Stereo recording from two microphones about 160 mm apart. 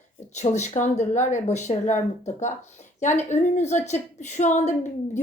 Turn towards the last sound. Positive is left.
turn(degrees=45)  # may be behind; listen again after turning